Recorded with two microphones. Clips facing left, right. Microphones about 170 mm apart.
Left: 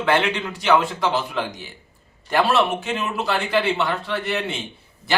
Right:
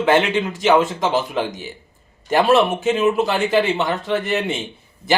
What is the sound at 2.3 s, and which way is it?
A man's voice, 20° right (ahead or behind).